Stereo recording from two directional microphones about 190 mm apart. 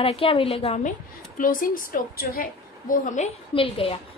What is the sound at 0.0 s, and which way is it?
Speech, 30° left (ahead or behind).